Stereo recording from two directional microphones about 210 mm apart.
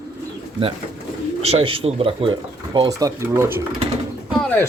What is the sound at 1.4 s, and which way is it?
Speech, 30° right (ahead or behind).